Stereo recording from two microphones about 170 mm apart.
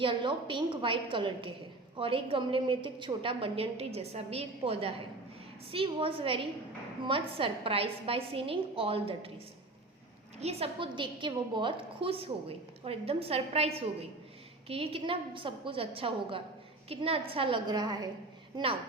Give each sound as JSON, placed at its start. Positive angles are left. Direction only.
{"t": 0.0, "sound": "a woman's voice", "side_deg": -30}
{"t": 10.4, "sound": "a woman's voice", "side_deg": -35}